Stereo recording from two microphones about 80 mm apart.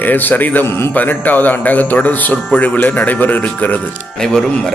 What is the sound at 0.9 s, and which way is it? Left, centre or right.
Speech, left.